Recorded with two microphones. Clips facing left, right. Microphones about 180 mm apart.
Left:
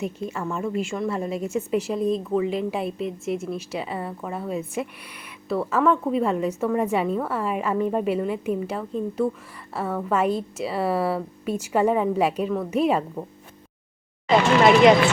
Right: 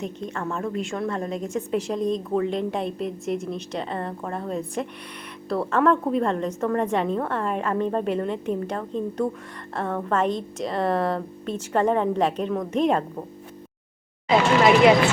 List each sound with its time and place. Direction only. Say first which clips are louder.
0.0 s a woman's voice: left 1 dB; 5° left (ahead or behind)